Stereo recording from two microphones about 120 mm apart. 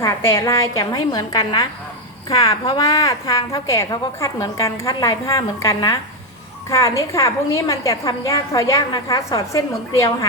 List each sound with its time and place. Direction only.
0.0 s a woman's voice: 25° left (ahead or behind)